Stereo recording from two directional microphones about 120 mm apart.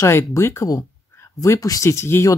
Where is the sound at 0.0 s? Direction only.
25° left (ahead or behind).